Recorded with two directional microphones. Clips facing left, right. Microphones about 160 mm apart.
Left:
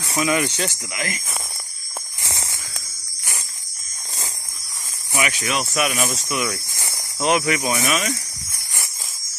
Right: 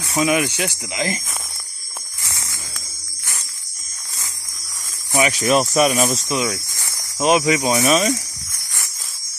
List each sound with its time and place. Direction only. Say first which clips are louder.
0.1 s speech: right 3 dB; 20° right (ahead or behind)
2.2 s a sound: left 3 dB; 25° left (ahead or behind)
5.1 s speech: right 7 dB; 35° right (ahead or behind)
5.9 s speech: right 4 dB; 25° right (ahead or behind)
6.7 s snake: left 2 dB; 15° left (ahead or behind)
7.2 s speech: right 4 dB; 20° right (ahead or behind)